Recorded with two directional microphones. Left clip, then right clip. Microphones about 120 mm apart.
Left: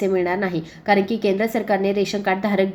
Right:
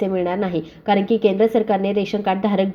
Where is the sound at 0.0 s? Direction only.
30° right (ahead or behind).